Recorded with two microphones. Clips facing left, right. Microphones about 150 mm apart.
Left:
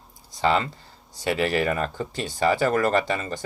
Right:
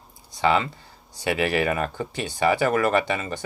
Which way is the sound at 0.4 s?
35° left (ahead or behind).